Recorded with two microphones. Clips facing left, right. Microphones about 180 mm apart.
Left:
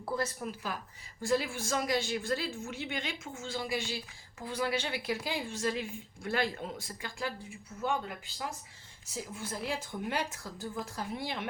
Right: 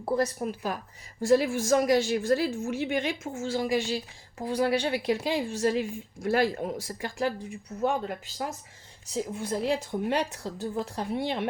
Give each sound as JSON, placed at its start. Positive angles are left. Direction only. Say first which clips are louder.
{"t": 0.0, "sound": "a woman's voice", "louder": "right 7 dB", "side_deg": -35}
{"t": 5.2, "sound": "a woman's voice", "louder": "right 8 dB", "side_deg": -15}
{"t": 5.5, "sound": "a woman's voice", "louder": "right 7 dB", "side_deg": -40}